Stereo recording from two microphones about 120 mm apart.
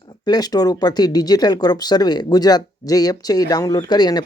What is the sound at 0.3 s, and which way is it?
Speech, 35° left (ahead or behind).